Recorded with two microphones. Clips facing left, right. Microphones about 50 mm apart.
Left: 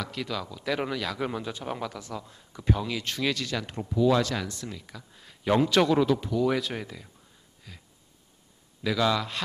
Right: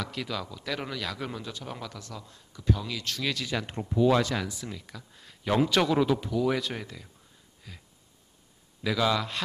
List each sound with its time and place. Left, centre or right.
0.0 s speech: centre
1.2 s speech: centre
3.4 s speech: centre
4.4 s speech: centre
7.7 s a sound: centre
8.8 s speech: centre